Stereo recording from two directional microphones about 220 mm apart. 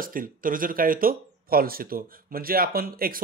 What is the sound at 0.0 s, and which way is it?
Speech, 40° right (ahead or behind).